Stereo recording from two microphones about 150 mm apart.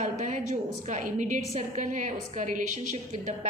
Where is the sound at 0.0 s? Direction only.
55° right (ahead or behind).